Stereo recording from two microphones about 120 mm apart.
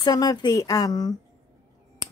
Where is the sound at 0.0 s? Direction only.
30° left (ahead or behind).